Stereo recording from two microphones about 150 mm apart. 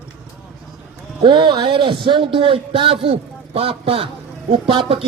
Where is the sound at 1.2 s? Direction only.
30° right (ahead or behind).